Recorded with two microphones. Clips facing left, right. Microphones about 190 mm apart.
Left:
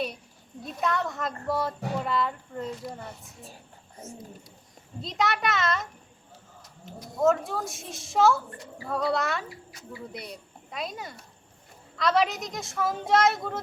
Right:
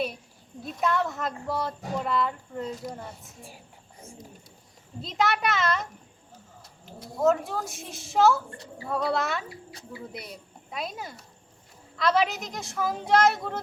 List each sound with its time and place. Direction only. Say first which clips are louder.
0.6 s a woman's voice: right 2 dB; centre (ahead or behind)
5.0 s a woman's voice: right 1 dB; centre (ahead or behind)
6.8 s a woman's voice: even; centre (ahead or behind)